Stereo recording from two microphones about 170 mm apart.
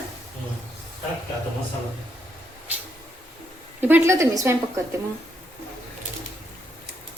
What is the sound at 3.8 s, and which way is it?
Speech, 15° right (ahead or behind).